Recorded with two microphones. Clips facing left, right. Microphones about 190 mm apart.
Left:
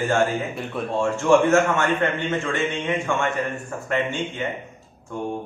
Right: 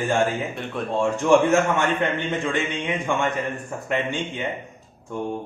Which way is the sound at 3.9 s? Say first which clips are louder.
Left 1 dB; 20° right (ahead or behind).